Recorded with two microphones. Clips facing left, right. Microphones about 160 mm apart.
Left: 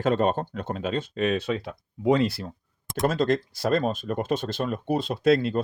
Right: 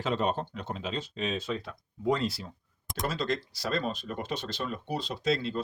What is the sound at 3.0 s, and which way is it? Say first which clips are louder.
Speech: left 8 dB; 50° left (ahead or behind).